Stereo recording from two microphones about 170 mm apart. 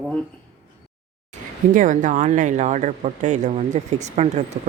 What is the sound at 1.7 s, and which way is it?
Speech, 50° right (ahead or behind).